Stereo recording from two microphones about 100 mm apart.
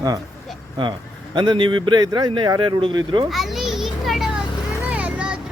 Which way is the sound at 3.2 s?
Centre (ahead or behind).